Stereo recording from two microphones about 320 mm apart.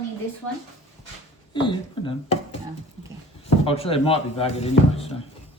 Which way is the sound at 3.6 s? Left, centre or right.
Centre.